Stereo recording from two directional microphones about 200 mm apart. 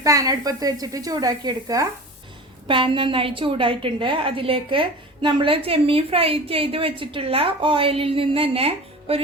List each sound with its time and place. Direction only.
0.0 s a woman's voice: 15° right (ahead or behind)